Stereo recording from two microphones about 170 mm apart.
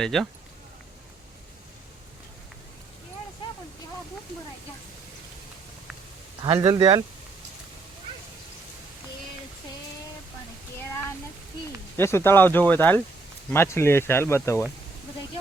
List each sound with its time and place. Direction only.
0.0 s speech: centre (ahead or behind)
6.4 s speech: 25° right (ahead or behind)
11.9 s speech: 15° left (ahead or behind)